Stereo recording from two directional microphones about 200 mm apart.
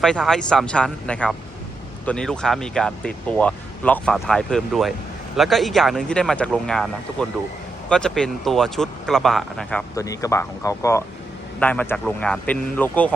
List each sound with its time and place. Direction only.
0.0 s speech: 5° left (ahead or behind)
9.9 s speech: 15° left (ahead or behind)